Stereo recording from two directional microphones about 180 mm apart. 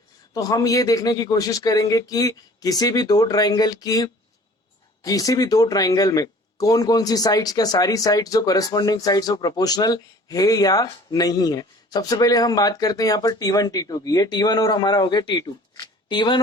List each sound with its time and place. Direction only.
0.3 s speech: 20° left (ahead or behind)